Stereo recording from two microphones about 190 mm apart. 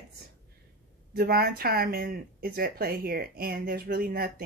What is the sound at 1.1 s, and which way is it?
Speech, 55° right (ahead or behind).